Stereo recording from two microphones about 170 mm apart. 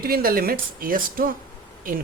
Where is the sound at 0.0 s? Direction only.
60° right (ahead or behind).